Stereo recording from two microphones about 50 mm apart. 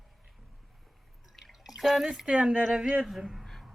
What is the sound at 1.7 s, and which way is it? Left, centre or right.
Speech, centre.